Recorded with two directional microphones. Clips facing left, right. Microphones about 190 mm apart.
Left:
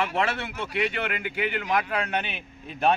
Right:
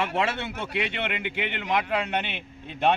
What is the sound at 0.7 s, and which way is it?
Speech, centre (ahead or behind).